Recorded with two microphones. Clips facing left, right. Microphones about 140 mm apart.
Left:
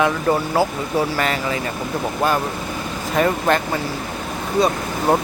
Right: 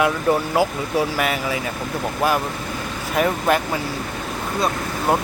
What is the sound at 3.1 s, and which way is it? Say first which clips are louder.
Speech: left 1 dB; 5° right (ahead or behind).